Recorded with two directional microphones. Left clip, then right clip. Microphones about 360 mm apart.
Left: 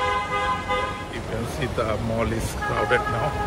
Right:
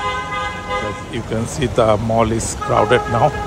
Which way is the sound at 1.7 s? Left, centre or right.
Centre.